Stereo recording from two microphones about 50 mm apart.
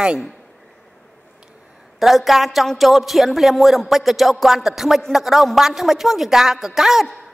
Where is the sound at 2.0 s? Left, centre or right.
Centre.